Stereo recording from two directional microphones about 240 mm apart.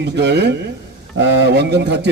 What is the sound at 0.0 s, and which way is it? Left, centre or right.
A man's voice, right.